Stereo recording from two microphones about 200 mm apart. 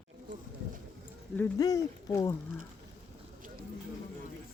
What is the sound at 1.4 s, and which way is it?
Speech, 15° left (ahead or behind).